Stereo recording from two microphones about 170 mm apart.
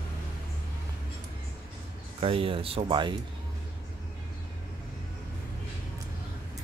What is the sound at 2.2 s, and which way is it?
Speech, 35° right (ahead or behind).